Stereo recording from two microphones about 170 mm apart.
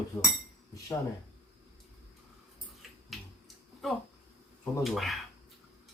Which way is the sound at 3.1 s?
Centre (ahead or behind).